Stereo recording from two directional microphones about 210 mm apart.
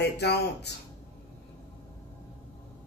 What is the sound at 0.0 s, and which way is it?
Speech, 50° left (ahead or behind).